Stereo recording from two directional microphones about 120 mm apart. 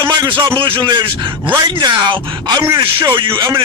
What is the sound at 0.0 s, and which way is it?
A man's voice, 40° right (ahead or behind).